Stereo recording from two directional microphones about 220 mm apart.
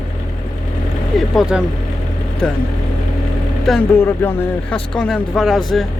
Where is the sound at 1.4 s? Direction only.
5° right (ahead or behind).